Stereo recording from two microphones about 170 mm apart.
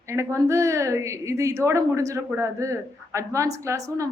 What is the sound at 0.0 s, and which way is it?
A woman's voice, 15° right (ahead or behind).